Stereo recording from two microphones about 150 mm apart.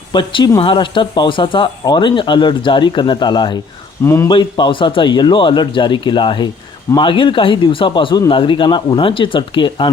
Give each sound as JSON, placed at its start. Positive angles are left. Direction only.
{"t": 0.1, "sound": "speech", "side_deg": 30}
{"t": 4.0, "sound": "speech", "side_deg": 15}
{"t": 4.3, "sound": "speech", "side_deg": 30}